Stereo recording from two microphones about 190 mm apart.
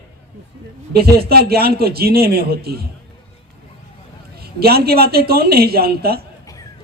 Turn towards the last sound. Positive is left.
turn(degrees=-55)  # may be behind; listen again after turning